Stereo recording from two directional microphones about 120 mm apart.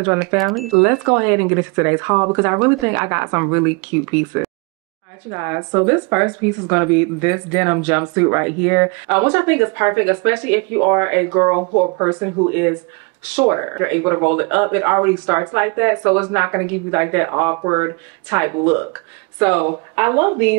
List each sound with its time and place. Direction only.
0.0 s speech: 25° right (ahead or behind)
0.4 s speech: centre (ahead or behind)
0.8 s speech: 25° right (ahead or behind)